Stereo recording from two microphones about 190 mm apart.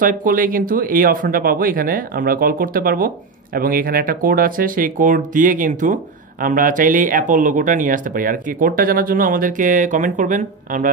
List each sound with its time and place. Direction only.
0.0 s speech: 45° right (ahead or behind)